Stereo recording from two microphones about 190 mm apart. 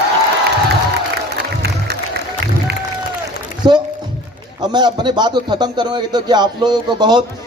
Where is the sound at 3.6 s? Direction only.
25° right (ahead or behind).